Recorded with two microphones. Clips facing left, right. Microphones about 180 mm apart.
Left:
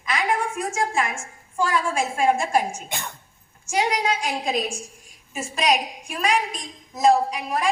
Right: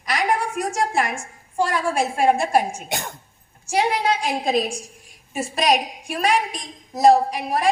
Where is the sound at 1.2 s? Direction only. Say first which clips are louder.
Right 2 dB; 35° right (ahead or behind).